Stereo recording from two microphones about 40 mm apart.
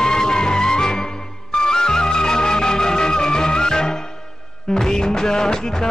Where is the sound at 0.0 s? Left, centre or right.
Centre.